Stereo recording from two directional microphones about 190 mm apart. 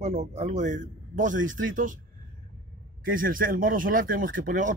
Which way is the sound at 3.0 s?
45° right (ahead or behind).